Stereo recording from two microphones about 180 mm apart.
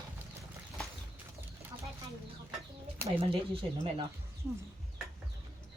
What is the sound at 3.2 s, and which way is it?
Speech, 30° right (ahead or behind).